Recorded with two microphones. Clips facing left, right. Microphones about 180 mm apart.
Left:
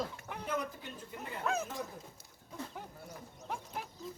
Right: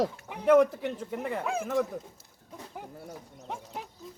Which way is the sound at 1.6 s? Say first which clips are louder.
Right 12 dB; 90° right.